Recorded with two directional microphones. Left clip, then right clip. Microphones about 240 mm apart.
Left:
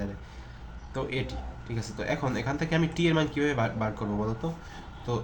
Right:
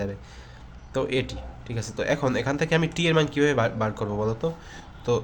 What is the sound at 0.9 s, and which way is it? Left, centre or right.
Speech, right.